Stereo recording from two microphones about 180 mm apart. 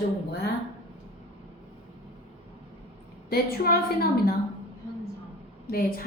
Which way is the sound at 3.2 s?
60° left (ahead or behind).